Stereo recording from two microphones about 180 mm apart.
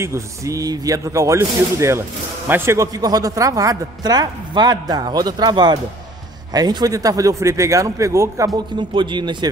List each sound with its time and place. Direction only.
0.0 s speech: 15° right (ahead or behind)